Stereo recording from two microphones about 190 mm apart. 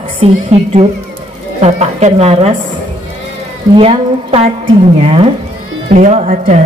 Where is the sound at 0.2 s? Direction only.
35° right (ahead or behind).